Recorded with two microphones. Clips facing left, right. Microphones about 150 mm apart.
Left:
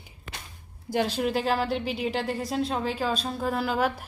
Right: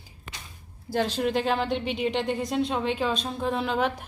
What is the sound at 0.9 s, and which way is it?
A woman's voice, 10° left (ahead or behind).